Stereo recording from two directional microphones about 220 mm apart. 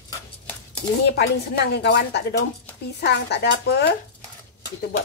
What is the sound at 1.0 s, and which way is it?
A woman's voice, 50° left (ahead or behind).